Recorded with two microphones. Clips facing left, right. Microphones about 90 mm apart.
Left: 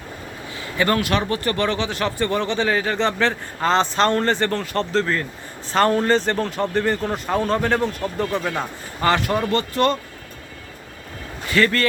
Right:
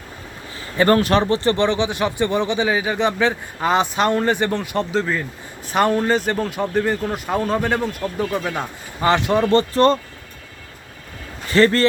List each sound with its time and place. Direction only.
0.5 s speech: 35° right (ahead or behind); by 9.0 s 5° right (ahead or behind)
9.0 s speech: 20° right (ahead or behind)
9.5 s speech: 35° right (ahead or behind)
11.5 s speech: 30° right (ahead or behind)